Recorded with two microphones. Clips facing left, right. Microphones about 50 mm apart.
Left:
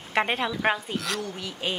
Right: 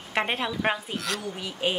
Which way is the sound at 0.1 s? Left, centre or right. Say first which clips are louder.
Left 2 dB; centre.